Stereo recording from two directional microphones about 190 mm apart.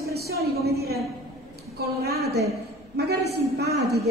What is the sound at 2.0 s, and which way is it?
A woman's voice, 55° right (ahead or behind).